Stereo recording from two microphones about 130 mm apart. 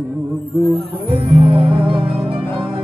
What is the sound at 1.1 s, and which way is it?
Music, 45° right (ahead or behind).